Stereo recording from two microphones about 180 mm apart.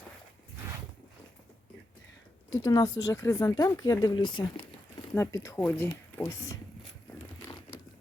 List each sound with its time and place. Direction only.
2.6 s speech: 20° left (ahead or behind)
5.1 s speech: 15° left (ahead or behind)